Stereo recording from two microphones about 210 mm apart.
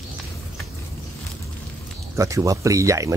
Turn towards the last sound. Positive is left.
turn(degrees=-15)  # may be behind; listen again after turning